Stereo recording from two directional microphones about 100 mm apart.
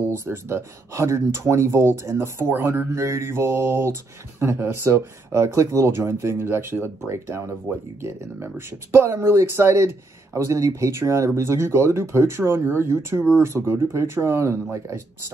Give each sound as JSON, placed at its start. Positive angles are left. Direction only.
{"t": 0.1, "sound": "speech", "side_deg": -25}